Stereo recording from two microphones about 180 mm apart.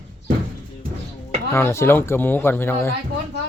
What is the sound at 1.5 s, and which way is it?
Speech, 15° left (ahead or behind).